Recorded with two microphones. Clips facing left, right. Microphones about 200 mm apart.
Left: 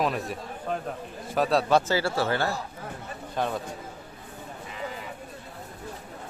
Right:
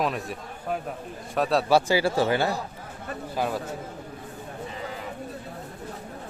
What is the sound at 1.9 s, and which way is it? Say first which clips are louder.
A man's voice: right 3 dB; 15° right (ahead or behind).